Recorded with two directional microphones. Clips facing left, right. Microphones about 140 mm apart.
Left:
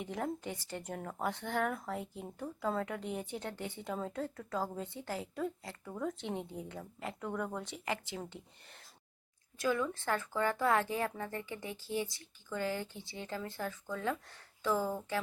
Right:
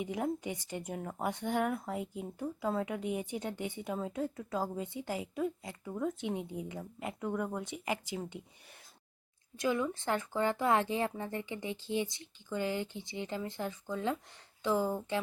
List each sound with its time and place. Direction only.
0.0 s speech: 10° right (ahead or behind)
9.6 s a woman's voice: 20° right (ahead or behind)